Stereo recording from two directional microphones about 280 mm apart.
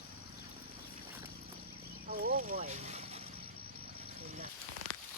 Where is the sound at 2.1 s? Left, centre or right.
Right.